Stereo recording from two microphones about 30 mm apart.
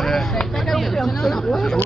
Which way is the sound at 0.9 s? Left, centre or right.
Centre.